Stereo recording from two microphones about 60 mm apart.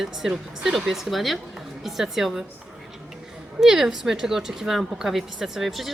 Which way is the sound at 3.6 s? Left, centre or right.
Centre.